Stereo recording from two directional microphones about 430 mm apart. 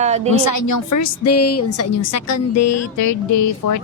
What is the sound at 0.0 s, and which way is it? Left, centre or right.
Speech, centre.